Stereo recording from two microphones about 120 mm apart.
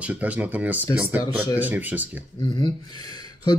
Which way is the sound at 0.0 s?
10° right (ahead or behind).